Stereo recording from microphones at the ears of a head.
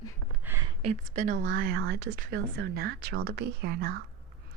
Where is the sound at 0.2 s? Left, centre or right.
Right.